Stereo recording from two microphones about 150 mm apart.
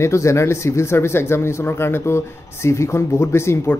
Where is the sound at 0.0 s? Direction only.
20° left (ahead or behind).